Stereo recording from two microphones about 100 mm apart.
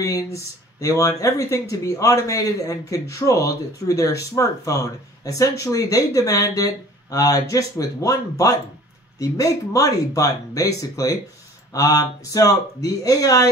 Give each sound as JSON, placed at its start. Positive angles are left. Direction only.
{"t": 0.0, "sound": "speech", "side_deg": 35}